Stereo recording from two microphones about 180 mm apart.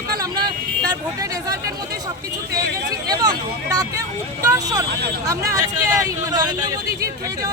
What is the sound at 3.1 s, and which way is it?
Speech, 20° right (ahead or behind).